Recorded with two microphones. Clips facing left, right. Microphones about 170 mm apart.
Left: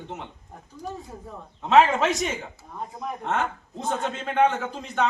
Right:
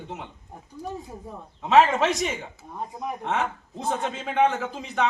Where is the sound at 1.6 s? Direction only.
Centre (ahead or behind).